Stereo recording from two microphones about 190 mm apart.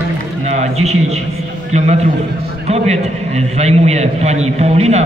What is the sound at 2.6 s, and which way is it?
A man's voice, 35° right (ahead or behind).